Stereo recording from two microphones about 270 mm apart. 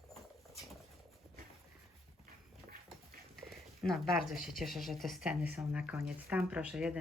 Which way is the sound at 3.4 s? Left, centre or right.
Centre.